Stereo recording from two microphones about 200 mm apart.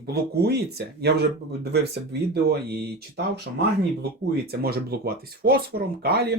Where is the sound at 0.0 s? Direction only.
50° right (ahead or behind).